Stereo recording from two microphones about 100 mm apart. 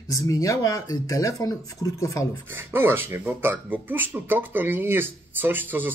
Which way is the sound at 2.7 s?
25° right (ahead or behind).